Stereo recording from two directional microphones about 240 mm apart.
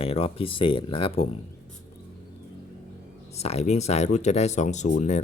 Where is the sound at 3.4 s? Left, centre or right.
Left.